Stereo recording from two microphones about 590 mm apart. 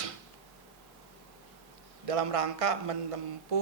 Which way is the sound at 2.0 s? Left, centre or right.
Right.